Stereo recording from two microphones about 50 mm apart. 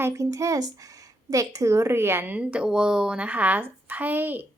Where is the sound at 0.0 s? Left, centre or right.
Right.